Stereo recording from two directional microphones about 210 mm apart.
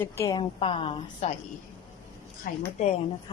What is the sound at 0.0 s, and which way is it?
A woman's voice, 15° left (ahead or behind).